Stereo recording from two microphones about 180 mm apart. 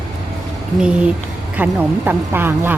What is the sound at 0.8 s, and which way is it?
A woman's voice, 5° right (ahead or behind).